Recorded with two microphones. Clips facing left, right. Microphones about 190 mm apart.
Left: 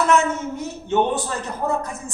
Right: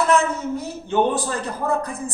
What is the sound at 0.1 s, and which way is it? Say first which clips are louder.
A woman's voice: even; 35° right (ahead or behind).